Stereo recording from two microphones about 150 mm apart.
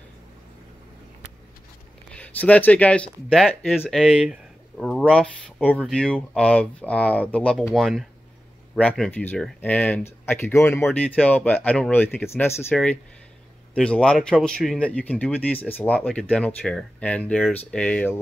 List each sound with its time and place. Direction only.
2.1 s speech: 10° left (ahead or behind)
13.7 s speech: 5° left (ahead or behind)